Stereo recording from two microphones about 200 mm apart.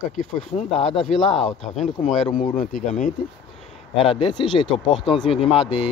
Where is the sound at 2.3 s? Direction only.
40° left (ahead or behind).